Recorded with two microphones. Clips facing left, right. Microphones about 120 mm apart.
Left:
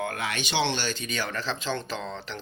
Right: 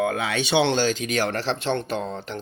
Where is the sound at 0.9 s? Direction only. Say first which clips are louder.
Right 8 dB; 90° right; by 2.4 s 55° right (ahead or behind).